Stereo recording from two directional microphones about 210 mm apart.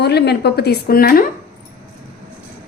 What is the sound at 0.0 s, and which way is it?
A woman's voice, 50° left (ahead or behind).